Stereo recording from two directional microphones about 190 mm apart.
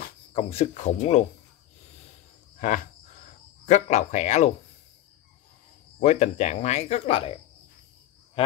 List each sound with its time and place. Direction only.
0.3 s speech: 30° left (ahead or behind)
3.6 s speech: 40° left (ahead or behind)
5.9 s speech: 40° left (ahead or behind)